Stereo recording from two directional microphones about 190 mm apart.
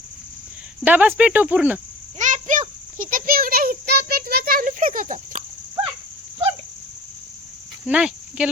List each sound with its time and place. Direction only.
0.9 s speech: 10° right (ahead or behind)
2.1 s a child's voice: 40° right (ahead or behind)
7.9 s speech: 5° right (ahead or behind)